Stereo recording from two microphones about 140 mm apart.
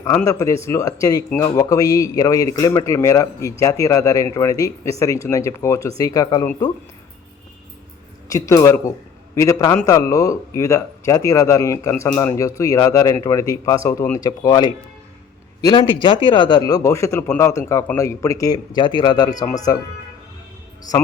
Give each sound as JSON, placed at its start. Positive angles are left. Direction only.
{"t": 0.3, "sound": "speech", "side_deg": 20}
{"t": 8.3, "sound": "a man's voice", "side_deg": 25}
{"t": 15.8, "sound": "a man's voice", "side_deg": 35}